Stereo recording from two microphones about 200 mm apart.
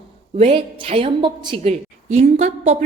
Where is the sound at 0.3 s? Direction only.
30° right (ahead or behind).